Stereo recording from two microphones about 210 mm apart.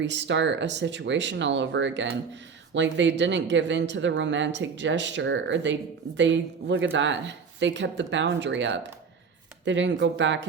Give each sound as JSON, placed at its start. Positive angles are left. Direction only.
{"t": 0.0, "sound": "speech", "side_deg": -55}